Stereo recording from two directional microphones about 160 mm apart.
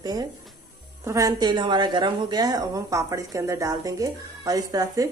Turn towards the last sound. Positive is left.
turn(degrees=-25)  # may be behind; listen again after turning